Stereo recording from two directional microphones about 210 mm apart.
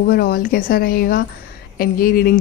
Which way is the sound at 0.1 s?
45° left (ahead or behind).